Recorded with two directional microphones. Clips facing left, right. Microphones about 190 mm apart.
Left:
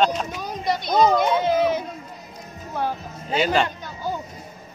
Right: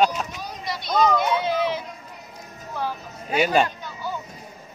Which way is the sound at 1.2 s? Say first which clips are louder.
Left 3 dB; 50° left (ahead or behind).